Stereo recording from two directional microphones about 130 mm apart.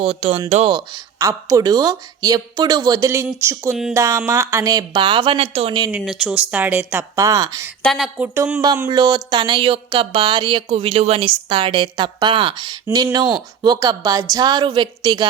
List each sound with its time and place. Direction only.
0.0 s speech: 45° right (ahead or behind)
0.7 s speech: 35° right (ahead or behind)
6.0 s speech: centre (ahead or behind); by 7.7 s 25° right (ahead or behind)
7.9 s speech: centre (ahead or behind)
8.6 s speech: 30° right (ahead or behind)